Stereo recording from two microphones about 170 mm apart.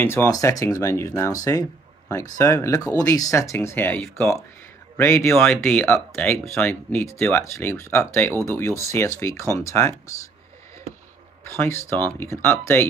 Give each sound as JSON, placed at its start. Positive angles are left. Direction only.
{"t": 0.0, "sound": "speech", "side_deg": 15}
{"t": 11.4, "sound": "speech", "side_deg": 15}